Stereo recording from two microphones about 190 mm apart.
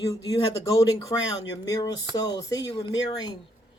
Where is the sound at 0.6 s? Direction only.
15° left (ahead or behind).